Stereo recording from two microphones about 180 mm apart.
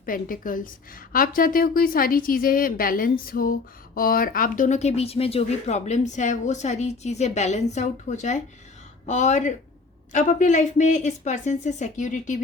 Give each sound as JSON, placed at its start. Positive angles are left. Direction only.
{"t": 0.0, "sound": "a woman's voice", "side_deg": 50}